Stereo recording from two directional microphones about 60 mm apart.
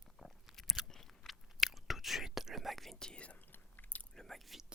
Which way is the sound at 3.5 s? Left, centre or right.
Left.